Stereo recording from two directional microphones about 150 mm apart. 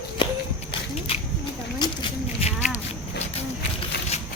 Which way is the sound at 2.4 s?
40° left (ahead or behind).